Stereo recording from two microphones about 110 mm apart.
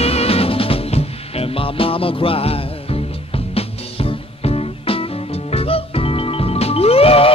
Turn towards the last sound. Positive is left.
turn(degrees=60)  # may be behind; listen again after turning